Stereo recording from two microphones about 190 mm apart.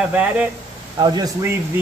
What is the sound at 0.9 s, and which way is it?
Speech, 20° right (ahead or behind).